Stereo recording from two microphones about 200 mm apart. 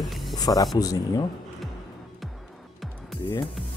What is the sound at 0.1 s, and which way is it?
Music, centre (ahead or behind).